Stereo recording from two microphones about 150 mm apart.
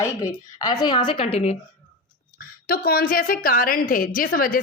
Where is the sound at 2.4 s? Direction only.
90° left.